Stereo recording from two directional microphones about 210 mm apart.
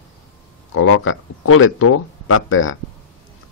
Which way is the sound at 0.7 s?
80° left.